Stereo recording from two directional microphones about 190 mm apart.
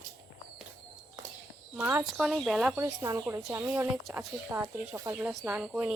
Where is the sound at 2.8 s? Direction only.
15° right (ahead or behind).